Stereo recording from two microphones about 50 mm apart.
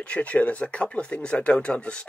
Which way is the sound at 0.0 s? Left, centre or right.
Left.